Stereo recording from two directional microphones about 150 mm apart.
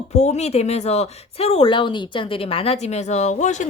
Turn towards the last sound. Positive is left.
turn(degrees=50)  # may be behind; listen again after turning